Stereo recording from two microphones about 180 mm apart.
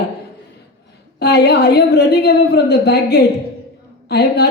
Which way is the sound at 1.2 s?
65° left (ahead or behind).